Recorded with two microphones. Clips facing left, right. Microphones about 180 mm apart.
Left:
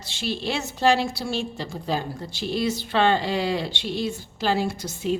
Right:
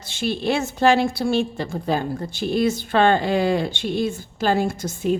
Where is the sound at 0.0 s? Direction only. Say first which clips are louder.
Right 5 dB; 50° right (ahead or behind).